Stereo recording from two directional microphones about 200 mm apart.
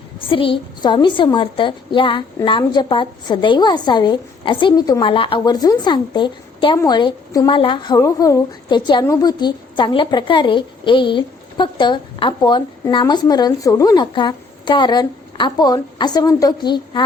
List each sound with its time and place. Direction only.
0.2 s a woman's voice: 25° left (ahead or behind)